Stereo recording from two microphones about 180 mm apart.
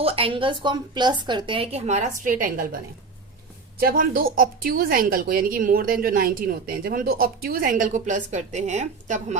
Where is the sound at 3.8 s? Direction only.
50° right (ahead or behind).